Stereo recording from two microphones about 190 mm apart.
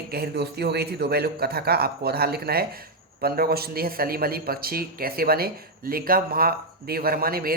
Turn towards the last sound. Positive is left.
turn(degrees=-50)  # may be behind; listen again after turning